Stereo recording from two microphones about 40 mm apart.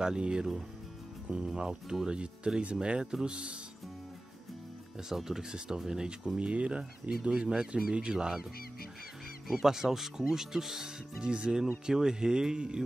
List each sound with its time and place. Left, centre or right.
0.2 s speech: right
5.1 s speech: centre; by 6.8 s right
6.8 s speech: centre
9.5 s speech: centre
11.1 s speech: right